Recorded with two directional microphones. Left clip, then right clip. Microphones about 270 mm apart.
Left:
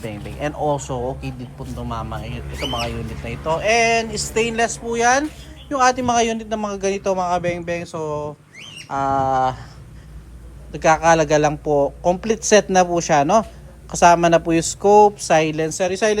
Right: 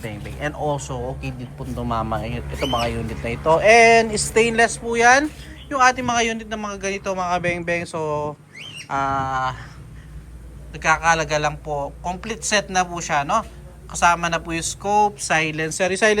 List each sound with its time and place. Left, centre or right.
0.0 s a man's voice: centre
10.7 s a man's voice: left